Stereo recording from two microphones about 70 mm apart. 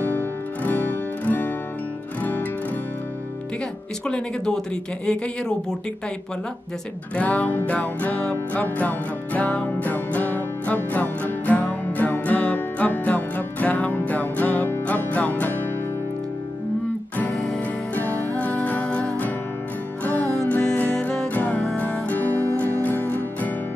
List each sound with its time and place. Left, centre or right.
0.0 s guitar: left
5.0 s speech: centre
7.2 s music: left
17.3 s music: centre
18.3 s music: left
21.5 s music: centre
21.7 s music: left